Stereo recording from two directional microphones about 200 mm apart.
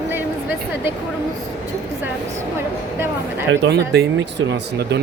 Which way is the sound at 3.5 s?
60° right (ahead or behind).